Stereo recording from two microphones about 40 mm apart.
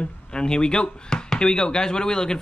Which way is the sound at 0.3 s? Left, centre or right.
Left.